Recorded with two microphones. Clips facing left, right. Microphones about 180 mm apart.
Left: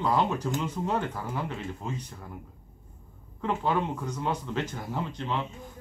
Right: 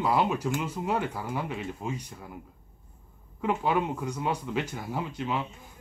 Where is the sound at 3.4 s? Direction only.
10° right (ahead or behind).